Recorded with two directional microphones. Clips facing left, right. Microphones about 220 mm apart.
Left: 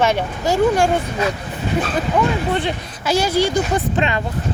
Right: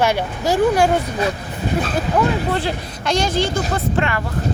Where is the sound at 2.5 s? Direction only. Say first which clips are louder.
Left 1 dB; centre (ahead or behind); by 4.2 s 20° left (ahead or behind).